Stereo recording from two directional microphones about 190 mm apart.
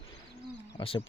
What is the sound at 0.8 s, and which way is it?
Speech, 25° left (ahead or behind).